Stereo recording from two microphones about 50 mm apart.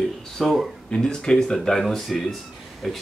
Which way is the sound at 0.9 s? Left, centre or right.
Centre.